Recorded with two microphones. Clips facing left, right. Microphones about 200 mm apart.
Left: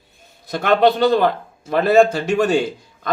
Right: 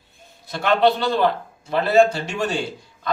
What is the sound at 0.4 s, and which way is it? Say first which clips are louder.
A man's voice: left 3 dB; 45° left (ahead or behind).